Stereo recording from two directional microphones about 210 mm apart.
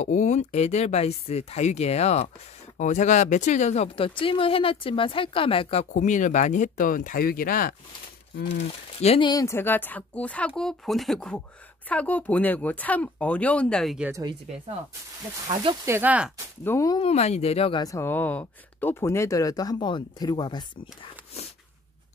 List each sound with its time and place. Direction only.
0.0 s speech: 35° left (ahead or behind)
8.9 s speech: 25° left (ahead or behind); by 14.1 s centre (ahead or behind)
15.4 s speech: 20° right (ahead or behind)
16.6 s speech: 15° left (ahead or behind)
17.0 s speech: 30° left (ahead or behind)